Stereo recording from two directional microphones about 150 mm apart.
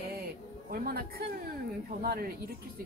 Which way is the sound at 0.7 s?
85° right.